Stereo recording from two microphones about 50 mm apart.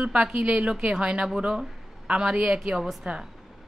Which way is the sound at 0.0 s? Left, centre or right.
Right.